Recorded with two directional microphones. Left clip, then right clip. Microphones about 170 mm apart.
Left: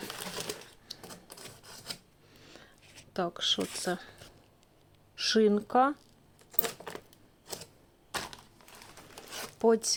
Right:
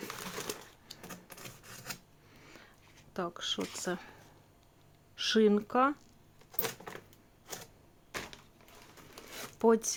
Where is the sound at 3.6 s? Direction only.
25° left (ahead or behind).